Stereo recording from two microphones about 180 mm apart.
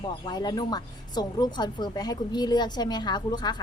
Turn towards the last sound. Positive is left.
turn(degrees=25)  # may be behind; listen again after turning